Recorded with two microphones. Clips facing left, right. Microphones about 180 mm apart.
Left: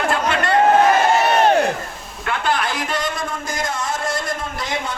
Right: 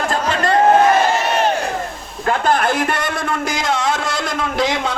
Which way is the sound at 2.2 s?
40° right (ahead or behind).